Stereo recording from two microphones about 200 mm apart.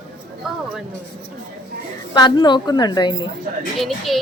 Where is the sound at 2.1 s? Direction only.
20° left (ahead or behind).